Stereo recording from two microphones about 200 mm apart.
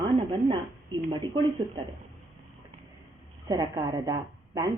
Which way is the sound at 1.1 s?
25° right (ahead or behind).